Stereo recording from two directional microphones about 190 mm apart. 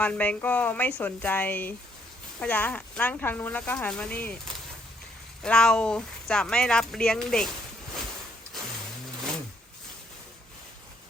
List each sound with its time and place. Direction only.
0.0 s speech: 5° left (ahead or behind)
5.4 s speech: 5° left (ahead or behind)